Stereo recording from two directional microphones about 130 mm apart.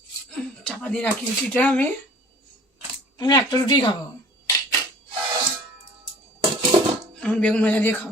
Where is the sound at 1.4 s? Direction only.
10° left (ahead or behind).